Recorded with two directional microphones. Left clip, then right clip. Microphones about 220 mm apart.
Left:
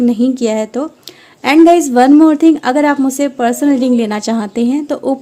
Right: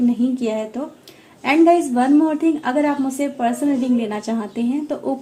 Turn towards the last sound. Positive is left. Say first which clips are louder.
# left 7 dB
turn(degrees=50)  # may be behind; listen again after turning